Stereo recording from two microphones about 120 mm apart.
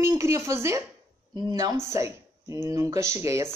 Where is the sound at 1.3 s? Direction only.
35° right (ahead or behind).